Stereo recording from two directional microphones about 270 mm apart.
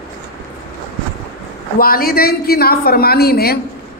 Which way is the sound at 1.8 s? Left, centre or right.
Left.